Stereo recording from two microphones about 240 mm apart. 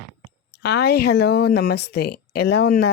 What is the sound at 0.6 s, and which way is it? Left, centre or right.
Speech, left.